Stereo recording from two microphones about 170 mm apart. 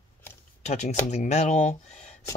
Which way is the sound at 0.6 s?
45° left (ahead or behind).